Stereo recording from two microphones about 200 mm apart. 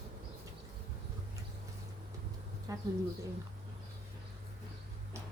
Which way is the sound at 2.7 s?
15° right (ahead or behind).